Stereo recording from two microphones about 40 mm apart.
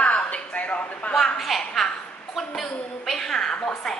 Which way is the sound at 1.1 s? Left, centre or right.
Centre.